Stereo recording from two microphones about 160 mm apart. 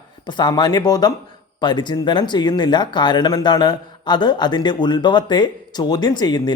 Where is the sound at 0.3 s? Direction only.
30° left (ahead or behind).